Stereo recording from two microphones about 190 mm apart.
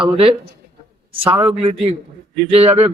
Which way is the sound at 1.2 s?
30° right (ahead or behind).